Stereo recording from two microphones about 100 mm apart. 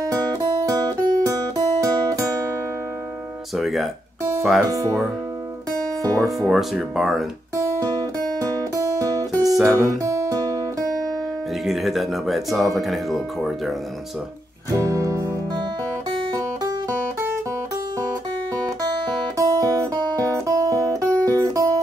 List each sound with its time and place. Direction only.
0.0 s music: 35° right (ahead or behind)
3.5 s speech: centre (ahead or behind)
5.7 s music: 35° right (ahead or behind)
6.4 s speech: centre (ahead or behind)
9.4 s music: centre (ahead or behind)
9.8 s music: 35° right (ahead or behind)
11.6 s speech: centre (ahead or behind)
14.7 s music: 30° right (ahead or behind)
19.3 s guitar: 35° right (ahead or behind)
20.2 s music: 35° right (ahead or behind)